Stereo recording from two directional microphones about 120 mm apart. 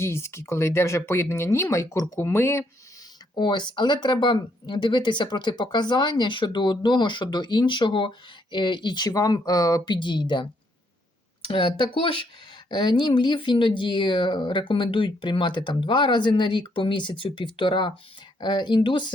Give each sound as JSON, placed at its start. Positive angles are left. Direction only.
{"t": 0.0, "sound": "speech", "side_deg": 20}
{"t": 3.3, "sound": "speech", "side_deg": 40}
{"t": 11.4, "sound": "speech", "side_deg": 45}